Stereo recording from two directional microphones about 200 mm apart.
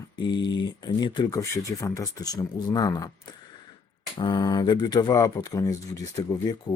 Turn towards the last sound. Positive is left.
turn(degrees=20)  # may be behind; listen again after turning